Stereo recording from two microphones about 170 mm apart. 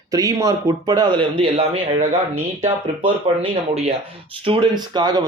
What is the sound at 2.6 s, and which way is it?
Speech, 35° right (ahead or behind).